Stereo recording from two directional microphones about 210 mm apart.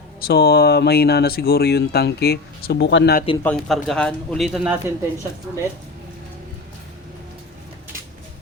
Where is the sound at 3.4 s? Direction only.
5° left (ahead or behind).